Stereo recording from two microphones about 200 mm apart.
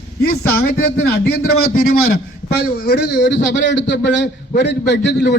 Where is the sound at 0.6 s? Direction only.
50° left (ahead or behind).